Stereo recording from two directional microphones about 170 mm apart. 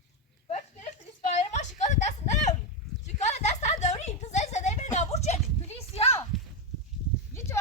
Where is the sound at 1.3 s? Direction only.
45° left (ahead or behind).